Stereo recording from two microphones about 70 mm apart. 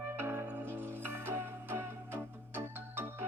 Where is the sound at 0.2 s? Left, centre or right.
Right.